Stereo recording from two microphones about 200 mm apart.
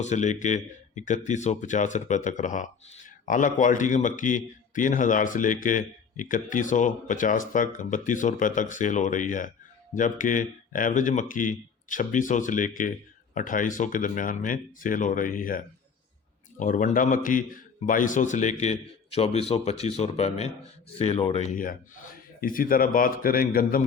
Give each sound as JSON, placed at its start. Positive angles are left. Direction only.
{"t": 0.0, "sound": "speech", "side_deg": 35}
{"t": 21.5, "sound": "a man's voice", "side_deg": 45}